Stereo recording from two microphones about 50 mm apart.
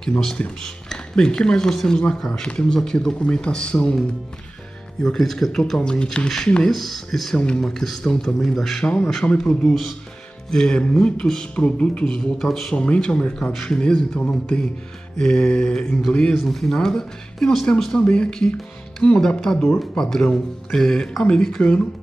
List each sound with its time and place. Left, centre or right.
0.6 s speech: centre
5.0 s speech: centre
5.8 s speech: centre
7.3 s speech: centre
8.8 s speech: left
9.4 s speech: centre
12.7 s speech: left
13.5 s speech: centre
16.4 s speech: centre
18.1 s speech: centre